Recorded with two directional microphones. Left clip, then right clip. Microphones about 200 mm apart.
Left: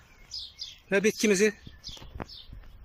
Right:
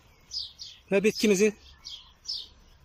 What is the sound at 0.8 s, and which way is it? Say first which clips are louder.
Speech: right 1 dB; 10° right (ahead or behind).